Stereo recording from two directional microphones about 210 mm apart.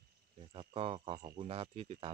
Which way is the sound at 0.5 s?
25° right (ahead or behind).